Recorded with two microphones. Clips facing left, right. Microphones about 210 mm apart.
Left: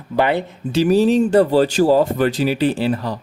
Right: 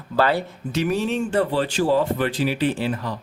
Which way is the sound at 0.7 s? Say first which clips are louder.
Left 8 dB; 30° left (ahead or behind).